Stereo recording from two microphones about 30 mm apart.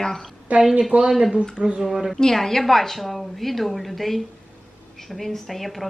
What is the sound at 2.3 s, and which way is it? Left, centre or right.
A woman's voice, centre.